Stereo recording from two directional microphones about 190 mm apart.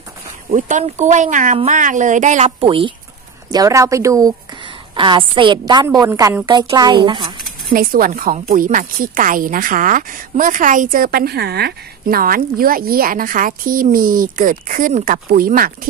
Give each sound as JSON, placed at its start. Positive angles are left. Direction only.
{"t": 0.5, "sound": "speech", "side_deg": -40}
{"t": 3.5, "sound": "a woman's voice", "side_deg": -15}
{"t": 7.7, "sound": "a woman's voice", "side_deg": -50}